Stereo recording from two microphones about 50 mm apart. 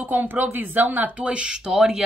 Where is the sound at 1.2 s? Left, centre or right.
Centre.